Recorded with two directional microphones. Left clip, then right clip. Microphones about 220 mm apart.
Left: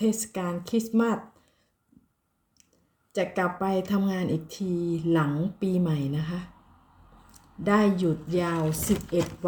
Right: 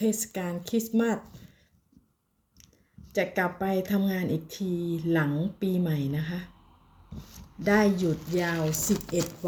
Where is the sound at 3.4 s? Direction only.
Centre (ahead or behind).